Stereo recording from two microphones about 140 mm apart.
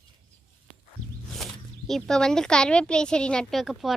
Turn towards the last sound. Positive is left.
turn(degrees=0)  # may be behind; listen again after turning